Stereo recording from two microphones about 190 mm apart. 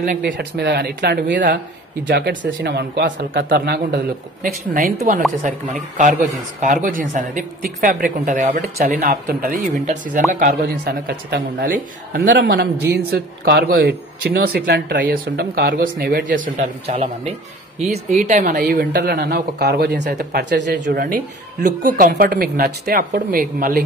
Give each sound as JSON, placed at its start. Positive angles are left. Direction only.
{"t": 0.0, "sound": "a woman's voice", "side_deg": -45}
{"t": 6.6, "sound": "a woman's voice", "side_deg": -45}
{"t": 18.2, "sound": "speech", "side_deg": -45}
{"t": 21.6, "sound": "a woman's voice", "side_deg": -45}